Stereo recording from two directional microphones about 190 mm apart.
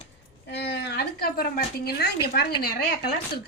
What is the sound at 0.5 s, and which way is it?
A woman's voice, 60° left (ahead or behind).